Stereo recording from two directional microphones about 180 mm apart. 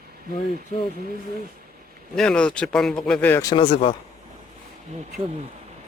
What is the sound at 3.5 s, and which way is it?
Speech, 30° left (ahead or behind).